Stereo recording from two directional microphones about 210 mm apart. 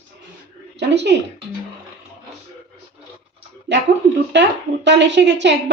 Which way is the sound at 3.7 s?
55° right (ahead or behind).